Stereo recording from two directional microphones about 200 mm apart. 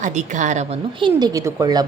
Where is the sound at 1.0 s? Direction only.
20° right (ahead or behind).